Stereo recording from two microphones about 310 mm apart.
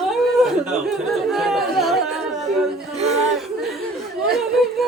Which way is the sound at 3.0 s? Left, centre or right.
Right.